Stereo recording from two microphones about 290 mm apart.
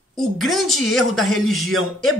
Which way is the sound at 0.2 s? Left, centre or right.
Centre.